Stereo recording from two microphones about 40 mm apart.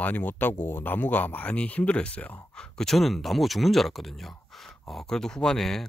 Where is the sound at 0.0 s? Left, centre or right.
Left.